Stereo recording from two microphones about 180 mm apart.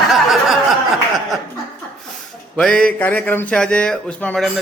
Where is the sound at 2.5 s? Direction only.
5° left (ahead or behind).